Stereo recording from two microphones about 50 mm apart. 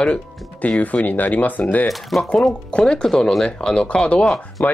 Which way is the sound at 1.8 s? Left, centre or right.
Centre.